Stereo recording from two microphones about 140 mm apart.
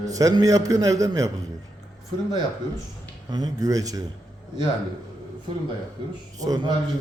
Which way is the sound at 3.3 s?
25° right (ahead or behind).